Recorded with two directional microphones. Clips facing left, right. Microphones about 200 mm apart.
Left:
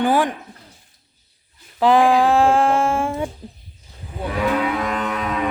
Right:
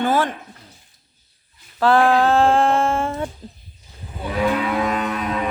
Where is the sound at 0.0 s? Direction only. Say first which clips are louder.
Left 2 dB; 15° left (ahead or behind).